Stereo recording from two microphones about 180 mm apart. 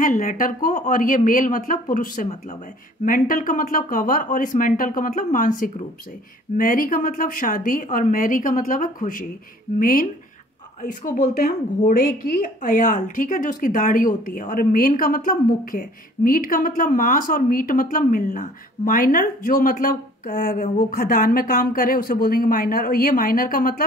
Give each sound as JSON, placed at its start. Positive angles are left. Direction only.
{"t": 0.0, "sound": "a woman's voice", "side_deg": 50}